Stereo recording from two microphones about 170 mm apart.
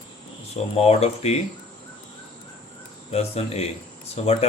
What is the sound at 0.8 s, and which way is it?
Speech, 35° left (ahead or behind).